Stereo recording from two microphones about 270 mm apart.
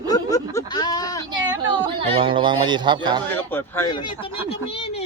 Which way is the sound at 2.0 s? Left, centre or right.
Centre.